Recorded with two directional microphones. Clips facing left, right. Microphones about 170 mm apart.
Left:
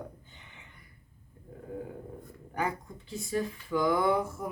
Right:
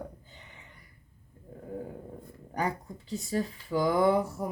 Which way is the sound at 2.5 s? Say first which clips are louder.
Right 1 dB; 35° right (ahead or behind).